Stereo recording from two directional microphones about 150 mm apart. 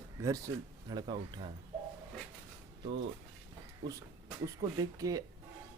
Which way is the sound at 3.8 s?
35° right (ahead or behind).